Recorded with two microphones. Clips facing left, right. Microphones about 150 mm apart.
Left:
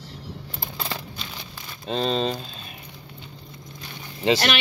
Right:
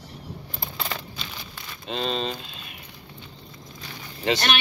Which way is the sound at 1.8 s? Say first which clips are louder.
Left 4 dB; 35° left (ahead or behind).